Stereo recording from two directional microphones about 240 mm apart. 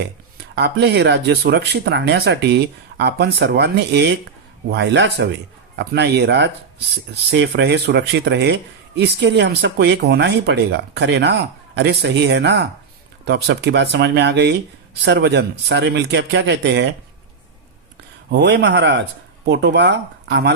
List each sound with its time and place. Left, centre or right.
0.5 s speech: right
18.3 s speech: right